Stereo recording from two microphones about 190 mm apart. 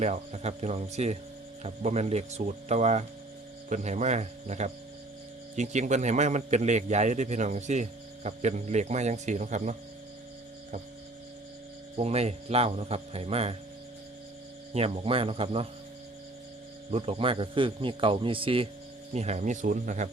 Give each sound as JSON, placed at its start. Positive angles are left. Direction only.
{"t": 0.0, "sound": "a man's voice", "side_deg": -35}
{"t": 11.9, "sound": "a man's voice", "side_deg": -35}
{"t": 14.7, "sound": "a man's voice", "side_deg": -35}
{"t": 16.9, "sound": "a man's voice", "side_deg": -30}